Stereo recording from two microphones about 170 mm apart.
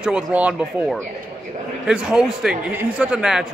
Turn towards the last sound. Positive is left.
turn(degrees=-5)  # may be behind; listen again after turning